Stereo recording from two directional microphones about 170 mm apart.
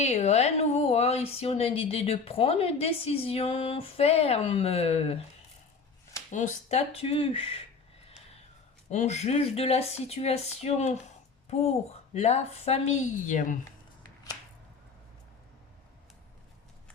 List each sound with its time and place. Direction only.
0.0 s a woman's voice: 40° left (ahead or behind)
6.3 s a woman's voice: 45° left (ahead or behind)
8.9 s a woman's voice: 40° left (ahead or behind)
12.1 s a woman's voice: 40° left (ahead or behind)